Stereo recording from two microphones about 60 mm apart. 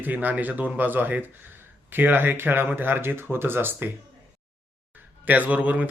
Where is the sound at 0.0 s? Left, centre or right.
Right.